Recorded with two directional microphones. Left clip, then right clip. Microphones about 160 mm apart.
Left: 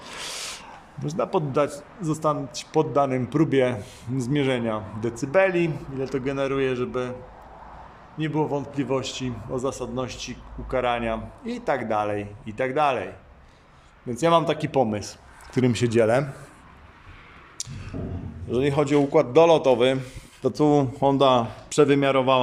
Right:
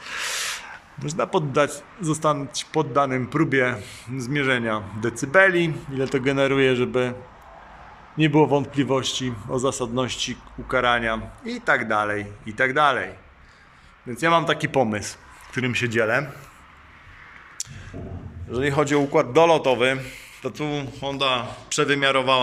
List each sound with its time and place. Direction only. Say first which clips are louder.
0.0 s a man's voice: right 6 dB; 15° left (ahead or behind); by 7.2 s 5° right (ahead or behind)
8.2 s a man's voice: right 7 dB; 10° right (ahead or behind); by 15.1 s 10° left (ahead or behind)
15.5 s speech: left 1 dB; 25° left (ahead or behind)
17.6 s a sound: right 1 dB; 15° left (ahead or behind)
18.5 s a man's voice: even; 15° left (ahead or behind)
20.5 s a man's voice: left 9 dB; 40° left (ahead or behind); by 22.4 s 20° left (ahead or behind)